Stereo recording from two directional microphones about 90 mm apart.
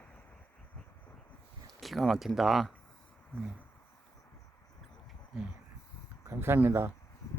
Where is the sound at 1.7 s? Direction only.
Centre (ahead or behind).